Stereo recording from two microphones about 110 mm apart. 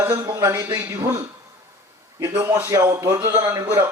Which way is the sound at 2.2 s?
25° right (ahead or behind).